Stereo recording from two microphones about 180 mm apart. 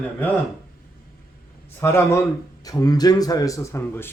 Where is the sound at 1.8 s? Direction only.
15° left (ahead or behind).